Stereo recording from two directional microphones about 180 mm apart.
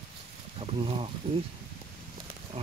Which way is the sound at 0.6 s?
30° right (ahead or behind).